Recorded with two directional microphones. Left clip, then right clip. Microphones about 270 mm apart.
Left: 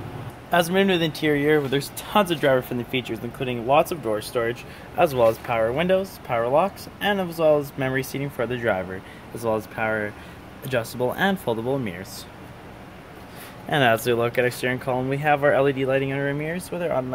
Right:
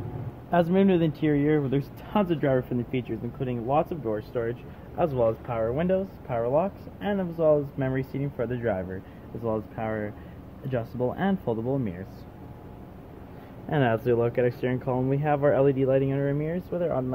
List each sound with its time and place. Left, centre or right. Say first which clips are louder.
0.5 s speech: left 3 dB; centre
11.1 s speech: left 5 dB; centre
13.7 s speech: left 5 dB; centre